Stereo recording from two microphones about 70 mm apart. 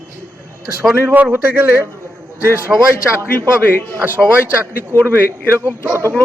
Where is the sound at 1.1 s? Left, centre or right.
Right.